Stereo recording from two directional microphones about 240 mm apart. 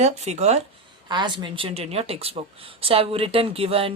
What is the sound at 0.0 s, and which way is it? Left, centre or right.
Speech, right.